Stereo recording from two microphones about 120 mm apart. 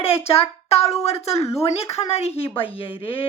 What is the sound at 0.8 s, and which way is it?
Speech, 60° left (ahead or behind).